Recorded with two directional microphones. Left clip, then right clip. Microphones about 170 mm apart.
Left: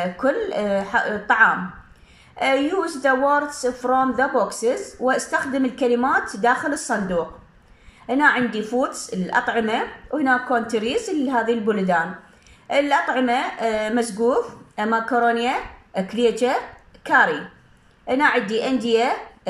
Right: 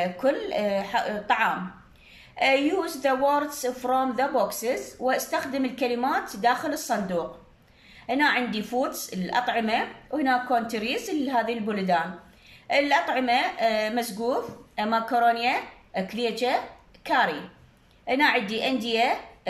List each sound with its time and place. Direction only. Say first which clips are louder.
0.0 s speech: left 3 dB; centre (ahead or behind)